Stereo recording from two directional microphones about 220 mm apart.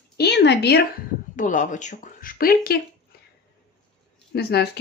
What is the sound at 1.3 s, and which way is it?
Speech, 35° left (ahead or behind).